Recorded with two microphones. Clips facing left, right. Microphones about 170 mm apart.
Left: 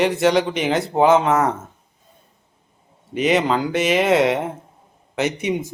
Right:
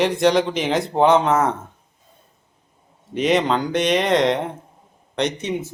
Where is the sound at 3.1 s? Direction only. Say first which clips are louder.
Even; centre (ahead or behind).